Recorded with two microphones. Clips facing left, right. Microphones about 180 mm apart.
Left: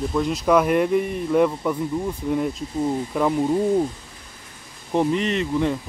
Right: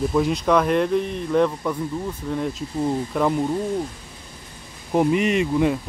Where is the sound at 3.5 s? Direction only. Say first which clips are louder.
Left 4 dB; 15° left (ahead or behind).